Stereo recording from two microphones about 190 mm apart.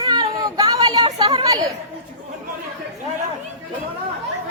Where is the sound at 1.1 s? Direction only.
20° right (ahead or behind).